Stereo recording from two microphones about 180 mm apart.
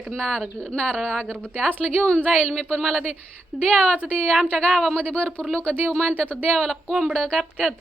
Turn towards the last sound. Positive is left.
turn(degrees=0)  # may be behind; listen again after turning